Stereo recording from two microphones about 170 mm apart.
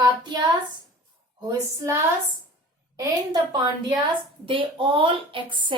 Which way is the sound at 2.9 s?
20° right (ahead or behind).